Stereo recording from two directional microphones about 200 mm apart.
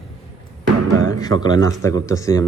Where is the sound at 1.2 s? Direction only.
20° left (ahead or behind).